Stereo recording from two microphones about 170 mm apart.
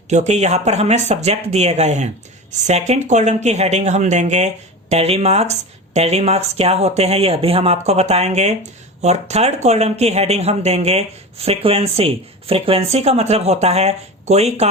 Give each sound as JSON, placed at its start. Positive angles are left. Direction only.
{"t": 0.1, "sound": "speech", "side_deg": -40}